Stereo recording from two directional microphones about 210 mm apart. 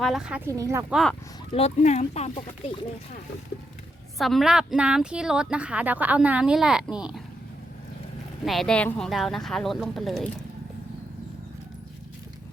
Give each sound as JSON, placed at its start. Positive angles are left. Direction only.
{"t": 0.0, "sound": "speech", "side_deg": 0}
{"t": 1.5, "sound": "speech", "side_deg": 30}
{"t": 4.2, "sound": "speech", "side_deg": 0}
{"t": 8.4, "sound": "speech", "side_deg": 0}